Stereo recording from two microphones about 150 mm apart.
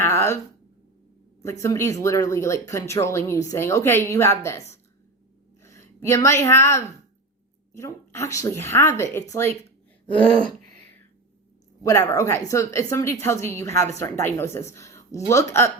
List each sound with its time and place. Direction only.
0.0 s a sound: 15° left (ahead or behind)
1.4 s a woman's voice: 20° left (ahead or behind)
11.8 s a woman's voice: 20° left (ahead or behind)